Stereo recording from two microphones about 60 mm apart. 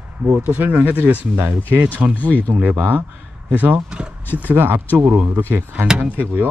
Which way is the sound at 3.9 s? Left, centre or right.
Centre.